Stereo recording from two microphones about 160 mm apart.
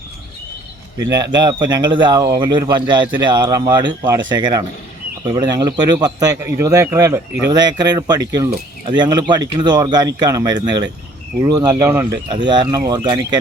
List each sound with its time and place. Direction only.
0.9 s speech: 25° right (ahead or behind)